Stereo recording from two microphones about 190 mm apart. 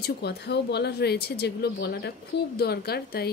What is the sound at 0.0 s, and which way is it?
A woman's voice, 60° left (ahead or behind).